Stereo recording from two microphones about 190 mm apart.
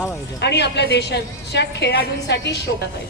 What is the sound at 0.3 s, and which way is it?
A woman's voice, 65° left (ahead or behind).